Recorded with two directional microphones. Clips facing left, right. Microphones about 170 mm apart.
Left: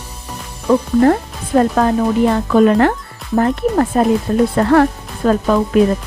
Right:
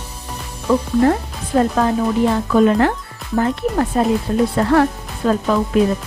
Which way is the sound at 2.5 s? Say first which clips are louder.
Left 3 dB; 60° left (ahead or behind).